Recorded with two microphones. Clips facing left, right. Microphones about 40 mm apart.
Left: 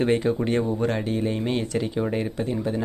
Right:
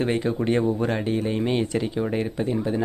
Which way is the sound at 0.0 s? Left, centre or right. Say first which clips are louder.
Left 2 dB; centre.